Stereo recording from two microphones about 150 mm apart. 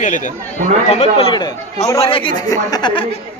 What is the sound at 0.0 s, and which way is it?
Speech, 55° left (ahead or behind).